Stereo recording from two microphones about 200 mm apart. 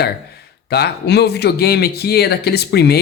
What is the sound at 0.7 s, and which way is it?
Speech, 55° left (ahead or behind).